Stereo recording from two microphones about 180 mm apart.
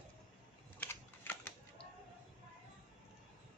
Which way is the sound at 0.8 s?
10° left (ahead or behind).